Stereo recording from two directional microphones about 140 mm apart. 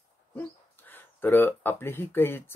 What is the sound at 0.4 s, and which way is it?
Speech, 15° left (ahead or behind).